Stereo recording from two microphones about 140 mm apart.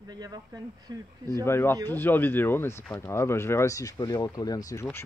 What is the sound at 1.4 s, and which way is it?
Speech, 15° left (ahead or behind).